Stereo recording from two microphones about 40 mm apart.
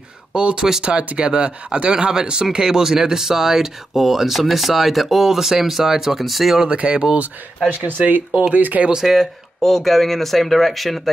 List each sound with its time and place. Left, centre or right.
0.3 s speech: right; by 6.6 s centre
6.7 s speech: right
7.8 s speech: right
8.9 s speech: centre
9.6 s speech: centre